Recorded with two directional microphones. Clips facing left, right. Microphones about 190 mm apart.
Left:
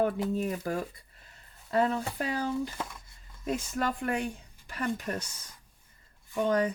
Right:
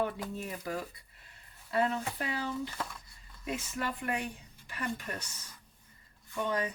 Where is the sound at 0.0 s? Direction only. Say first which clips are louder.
Left 7 dB; 45° left (ahead or behind).